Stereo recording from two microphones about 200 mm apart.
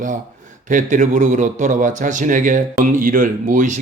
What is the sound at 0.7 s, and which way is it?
Speech, 40° right (ahead or behind).